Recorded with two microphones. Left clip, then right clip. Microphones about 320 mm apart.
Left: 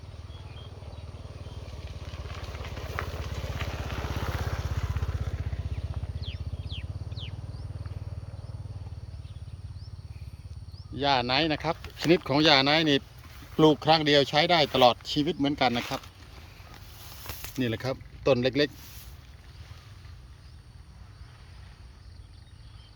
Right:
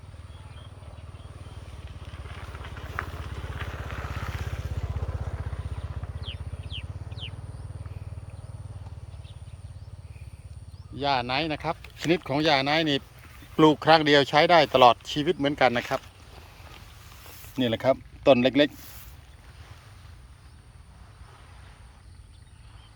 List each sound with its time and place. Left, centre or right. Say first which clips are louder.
0.3 s vehicle: left 2 dB; left; by 5.5 s centre
6.2 s a sound: right 3 dB; centre
10.9 s speech: left 1 dB; centre
17.6 s speech: right 8 dB; centre